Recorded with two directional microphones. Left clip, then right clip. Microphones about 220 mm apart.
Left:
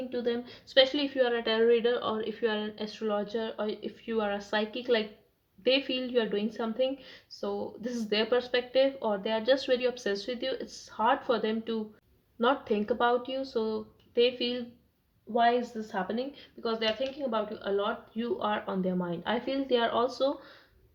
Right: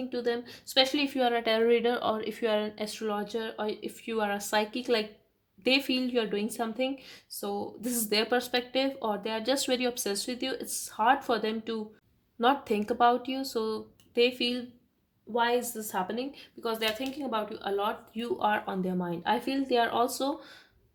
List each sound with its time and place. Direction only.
0.1 s a woman's voice: 40° right (ahead or behind)